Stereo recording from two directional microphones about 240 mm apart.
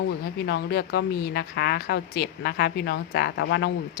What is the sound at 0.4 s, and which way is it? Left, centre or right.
A woman's voice, left.